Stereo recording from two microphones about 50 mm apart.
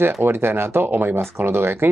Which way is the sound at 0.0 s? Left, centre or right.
Right.